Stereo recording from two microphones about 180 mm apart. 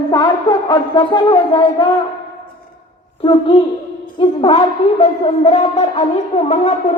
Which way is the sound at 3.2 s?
30° left (ahead or behind).